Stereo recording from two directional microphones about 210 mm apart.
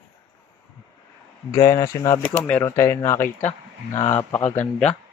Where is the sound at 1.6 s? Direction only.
15° left (ahead or behind).